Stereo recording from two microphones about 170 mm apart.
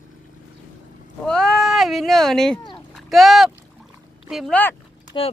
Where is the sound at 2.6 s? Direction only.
30° left (ahead or behind).